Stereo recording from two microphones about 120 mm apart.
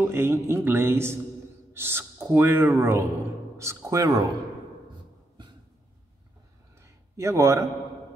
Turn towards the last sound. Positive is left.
turn(degrees=-25)  # may be behind; listen again after turning